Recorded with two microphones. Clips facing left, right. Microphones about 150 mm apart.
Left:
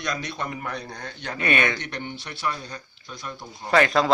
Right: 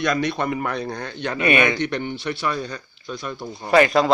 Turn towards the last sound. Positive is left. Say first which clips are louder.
# right 4 dB
turn(degrees=-5)  # may be behind; listen again after turning